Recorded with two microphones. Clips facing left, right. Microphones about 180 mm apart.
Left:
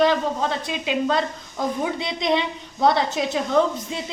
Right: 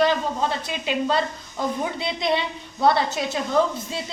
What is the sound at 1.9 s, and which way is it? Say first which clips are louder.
A woman's voice: left 1 dB; 20° left (ahead or behind).